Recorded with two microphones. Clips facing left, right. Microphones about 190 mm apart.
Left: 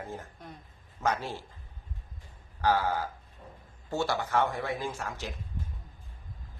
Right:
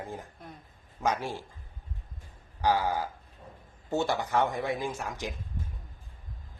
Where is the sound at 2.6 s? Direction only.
15° right (ahead or behind).